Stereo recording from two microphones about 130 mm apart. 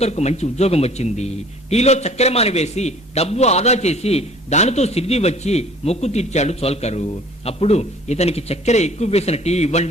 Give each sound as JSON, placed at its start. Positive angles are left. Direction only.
{"t": 0.0, "sound": "a man's voice", "side_deg": 55}